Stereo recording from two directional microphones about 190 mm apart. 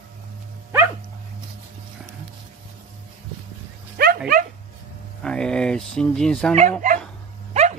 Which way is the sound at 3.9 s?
50° right (ahead or behind).